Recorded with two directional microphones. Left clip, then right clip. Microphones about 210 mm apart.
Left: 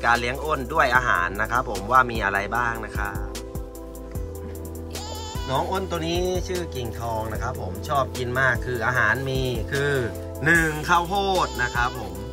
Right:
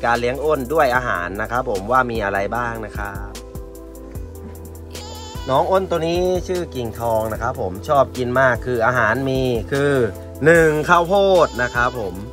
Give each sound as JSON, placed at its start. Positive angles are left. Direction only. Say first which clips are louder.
{"t": 0.0, "sound": "speech", "louder": "right 4 dB", "side_deg": 0}
{"t": 5.5, "sound": "speech", "louder": "right 9 dB", "side_deg": 5}
{"t": 11.4, "sound": "speech", "louder": "right 6 dB", "side_deg": -90}